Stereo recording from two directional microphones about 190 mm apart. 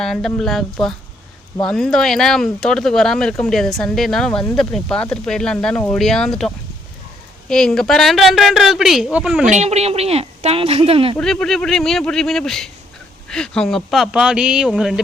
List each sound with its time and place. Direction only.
0.0 s speech: centre (ahead or behind)
9.5 s speech: 35° right (ahead or behind)
11.2 s speech: 5° left (ahead or behind)